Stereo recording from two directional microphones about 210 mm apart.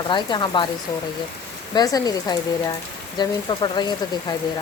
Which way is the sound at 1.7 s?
15° left (ahead or behind).